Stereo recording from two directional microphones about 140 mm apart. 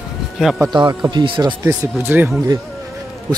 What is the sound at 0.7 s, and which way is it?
Speech, 30° right (ahead or behind).